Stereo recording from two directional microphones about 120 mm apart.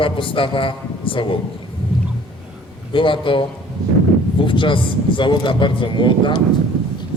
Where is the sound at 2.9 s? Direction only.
45° left (ahead or behind).